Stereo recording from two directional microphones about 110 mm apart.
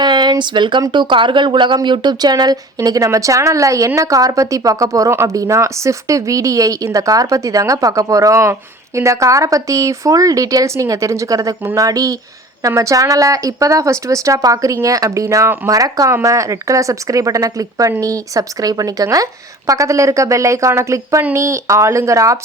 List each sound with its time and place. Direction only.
0.0 s speech: 40° right (ahead or behind)